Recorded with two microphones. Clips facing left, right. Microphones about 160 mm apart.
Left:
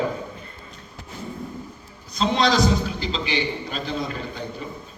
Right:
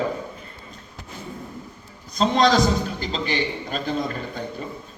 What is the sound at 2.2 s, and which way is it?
A man's voice, 45° right (ahead or behind).